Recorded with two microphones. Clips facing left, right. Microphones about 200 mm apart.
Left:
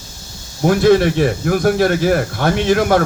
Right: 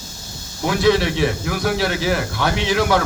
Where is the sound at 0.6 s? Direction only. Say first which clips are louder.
Left 5 dB; 50° left (ahead or behind).